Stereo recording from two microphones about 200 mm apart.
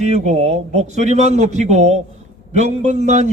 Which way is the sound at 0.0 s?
35° right (ahead or behind).